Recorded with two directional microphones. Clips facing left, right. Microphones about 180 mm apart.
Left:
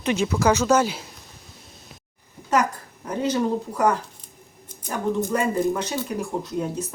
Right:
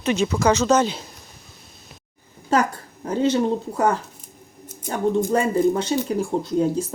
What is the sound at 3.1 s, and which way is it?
Speech, 30° right (ahead or behind).